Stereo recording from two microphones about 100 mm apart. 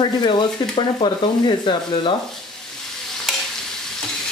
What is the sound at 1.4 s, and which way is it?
Speech, 50° left (ahead or behind).